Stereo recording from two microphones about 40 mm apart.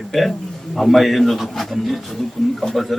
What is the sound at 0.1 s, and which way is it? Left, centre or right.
Speech, centre.